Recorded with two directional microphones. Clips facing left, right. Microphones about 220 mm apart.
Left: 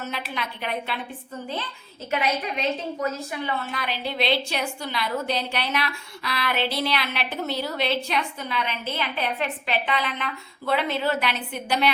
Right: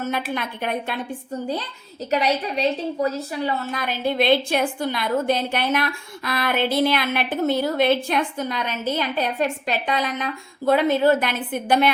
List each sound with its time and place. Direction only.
0.0 s a woman's voice: 50° right (ahead or behind)